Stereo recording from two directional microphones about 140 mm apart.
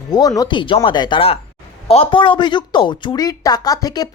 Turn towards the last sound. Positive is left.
turn(degrees=25)  # may be behind; listen again after turning